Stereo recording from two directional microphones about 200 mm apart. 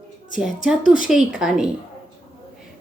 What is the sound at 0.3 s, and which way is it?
Speech, 5° right (ahead or behind).